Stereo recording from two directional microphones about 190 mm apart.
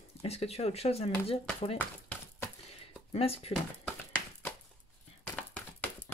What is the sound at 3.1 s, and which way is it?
Speech, 30° left (ahead or behind).